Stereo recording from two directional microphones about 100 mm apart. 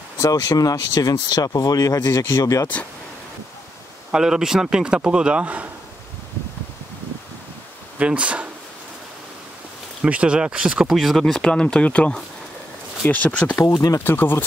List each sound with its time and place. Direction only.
0.2 s speech: 40° left (ahead or behind)
4.1 s speech: 5° right (ahead or behind)
8.0 s speech: 10° right (ahead or behind)
10.0 s speech: 10° right (ahead or behind); by 13.6 s 15° left (ahead or behind)
13.6 s speech: 35° left (ahead or behind)
14.0 s speech: 20° left (ahead or behind)